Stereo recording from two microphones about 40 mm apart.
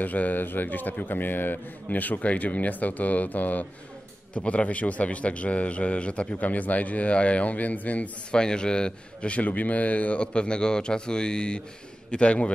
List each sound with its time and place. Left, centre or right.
0.0 s a man's voice: left
4.4 s a man's voice: left
6.5 s a man's voice: left
8.3 s a man's voice: left
10.2 s a man's voice: left